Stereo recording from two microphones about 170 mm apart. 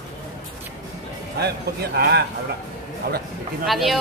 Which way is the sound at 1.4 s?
70° right (ahead or behind).